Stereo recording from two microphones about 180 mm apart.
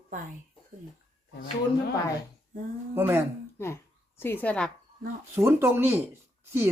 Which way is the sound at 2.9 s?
10° right (ahead or behind).